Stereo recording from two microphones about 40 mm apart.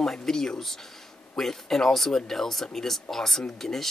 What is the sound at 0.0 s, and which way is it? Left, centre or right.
Speech, centre.